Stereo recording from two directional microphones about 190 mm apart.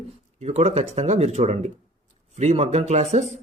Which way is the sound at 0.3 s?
35° right (ahead or behind).